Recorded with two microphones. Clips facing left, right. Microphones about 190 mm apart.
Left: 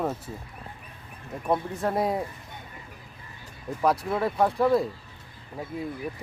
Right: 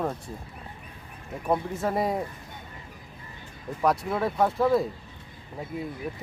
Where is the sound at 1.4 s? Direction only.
5° right (ahead or behind).